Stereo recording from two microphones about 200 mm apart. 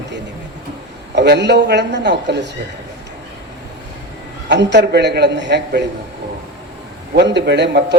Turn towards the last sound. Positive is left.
turn(degrees=-55)  # may be behind; listen again after turning